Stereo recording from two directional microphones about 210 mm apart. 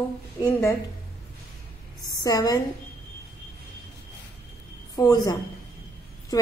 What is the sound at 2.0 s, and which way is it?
Speech, 20° left (ahead or behind).